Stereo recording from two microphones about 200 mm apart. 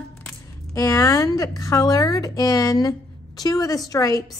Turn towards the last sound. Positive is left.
turn(degrees=20)  # may be behind; listen again after turning